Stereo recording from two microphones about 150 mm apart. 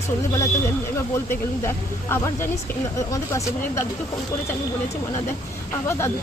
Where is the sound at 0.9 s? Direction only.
15° left (ahead or behind).